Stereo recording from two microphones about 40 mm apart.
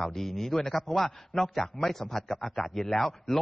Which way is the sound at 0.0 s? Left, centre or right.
Centre.